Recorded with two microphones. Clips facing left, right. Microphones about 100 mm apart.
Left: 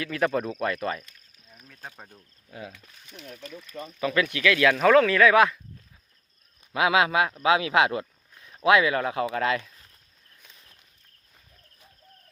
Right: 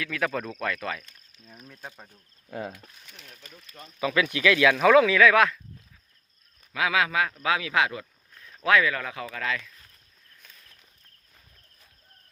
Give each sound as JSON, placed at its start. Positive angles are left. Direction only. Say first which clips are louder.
{"t": 0.0, "sound": "speech", "louder": "left 3 dB", "side_deg": 0}
{"t": 1.5, "sound": "speech", "louder": "right 5 dB", "side_deg": -25}
{"t": 2.5, "sound": "speech", "louder": "right 6 dB", "side_deg": -45}
{"t": 4.0, "sound": "speech", "louder": "even", "side_deg": -15}
{"t": 4.8, "sound": "speech", "louder": "even", "side_deg": -5}
{"t": 6.7, "sound": "speech", "louder": "left 3 dB", "side_deg": 20}
{"t": 8.4, "sound": "speech", "louder": "left 2 dB", "side_deg": 15}
{"t": 10.4, "sound": "a sound", "louder": "even", "side_deg": 25}